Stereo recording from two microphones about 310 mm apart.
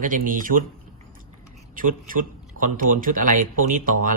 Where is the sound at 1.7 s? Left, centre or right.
Right.